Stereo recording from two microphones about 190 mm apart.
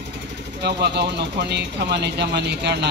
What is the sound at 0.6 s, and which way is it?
Speech, 65° right (ahead or behind).